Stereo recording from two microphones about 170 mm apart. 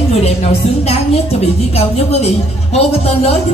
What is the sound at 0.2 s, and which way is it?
A woman's voice, 40° left (ahead or behind).